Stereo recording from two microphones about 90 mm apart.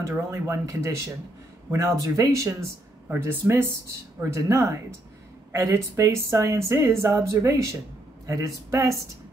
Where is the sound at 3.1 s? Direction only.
25° right (ahead or behind).